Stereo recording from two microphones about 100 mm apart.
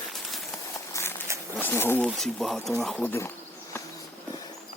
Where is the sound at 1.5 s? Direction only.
20° left (ahead or behind).